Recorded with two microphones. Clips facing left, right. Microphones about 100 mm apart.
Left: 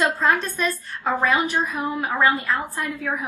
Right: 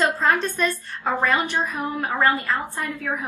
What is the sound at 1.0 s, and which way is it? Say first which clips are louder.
A woman's voice: left 1 dB; 15° left (ahead or behind).